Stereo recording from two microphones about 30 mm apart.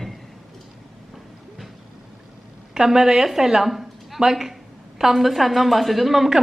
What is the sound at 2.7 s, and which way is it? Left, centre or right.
A woman's voice, centre.